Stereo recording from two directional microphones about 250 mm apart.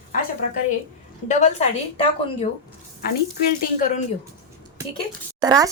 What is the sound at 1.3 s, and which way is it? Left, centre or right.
A woman's voice, left.